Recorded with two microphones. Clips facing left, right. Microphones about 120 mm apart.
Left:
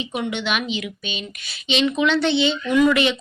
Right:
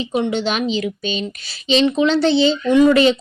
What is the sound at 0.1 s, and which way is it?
Speech, 30° right (ahead or behind).